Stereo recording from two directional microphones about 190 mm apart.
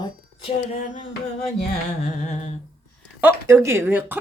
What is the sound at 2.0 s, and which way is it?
Humming, 40° left (ahead or behind).